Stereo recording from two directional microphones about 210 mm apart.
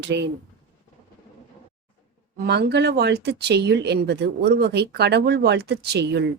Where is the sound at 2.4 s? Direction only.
50° right (ahead or behind).